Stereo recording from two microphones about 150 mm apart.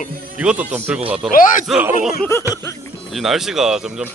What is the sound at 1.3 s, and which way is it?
Speech, 65° left (ahead or behind).